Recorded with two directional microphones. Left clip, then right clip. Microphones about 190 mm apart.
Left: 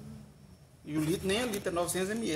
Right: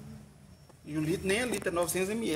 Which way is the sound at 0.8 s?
5° left (ahead or behind).